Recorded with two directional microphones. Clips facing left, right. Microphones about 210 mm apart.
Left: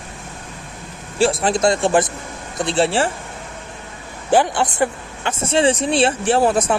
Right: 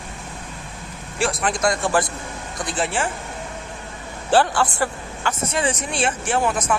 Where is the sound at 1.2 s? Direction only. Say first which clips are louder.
Left 6 dB; 30° left (ahead or behind).